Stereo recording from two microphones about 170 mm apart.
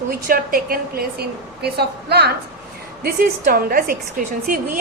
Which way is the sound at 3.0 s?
60° right (ahead or behind).